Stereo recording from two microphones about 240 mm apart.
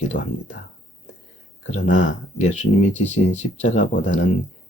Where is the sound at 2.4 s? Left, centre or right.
Left.